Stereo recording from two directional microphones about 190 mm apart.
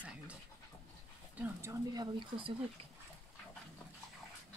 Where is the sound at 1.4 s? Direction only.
15° right (ahead or behind).